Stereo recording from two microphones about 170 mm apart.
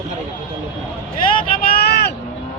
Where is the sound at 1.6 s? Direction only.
65° left (ahead or behind).